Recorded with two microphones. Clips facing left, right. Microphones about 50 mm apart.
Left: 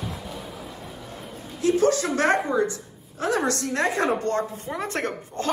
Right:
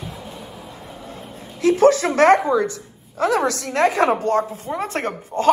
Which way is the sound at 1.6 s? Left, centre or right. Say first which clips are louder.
Right 6 dB; right.